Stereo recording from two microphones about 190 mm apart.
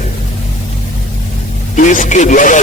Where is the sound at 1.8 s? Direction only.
40° left (ahead or behind).